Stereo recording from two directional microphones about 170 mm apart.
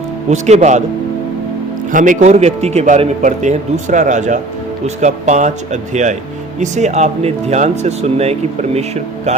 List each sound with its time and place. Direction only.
0.3 s speech: 40° right (ahead or behind)
1.9 s speech: 50° right (ahead or behind)